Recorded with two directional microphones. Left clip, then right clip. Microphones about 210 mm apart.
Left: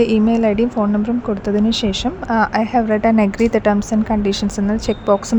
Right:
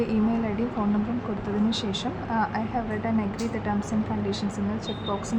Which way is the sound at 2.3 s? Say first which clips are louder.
Left 12 dB; 45° left (ahead or behind).